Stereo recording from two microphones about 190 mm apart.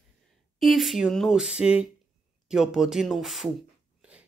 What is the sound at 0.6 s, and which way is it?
Speech, centre (ahead or behind).